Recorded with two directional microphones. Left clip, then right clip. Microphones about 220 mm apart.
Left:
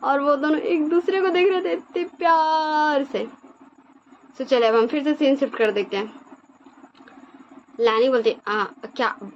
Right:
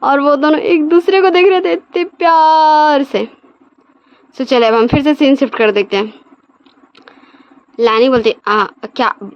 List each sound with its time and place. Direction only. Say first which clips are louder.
0.0 s a woman's voice: right 9 dB; 50° right (ahead or behind)
4.4 s a woman's voice: right 8 dB; 50° right (ahead or behind)
7.8 s a woman's voice: right 8 dB; 50° right (ahead or behind)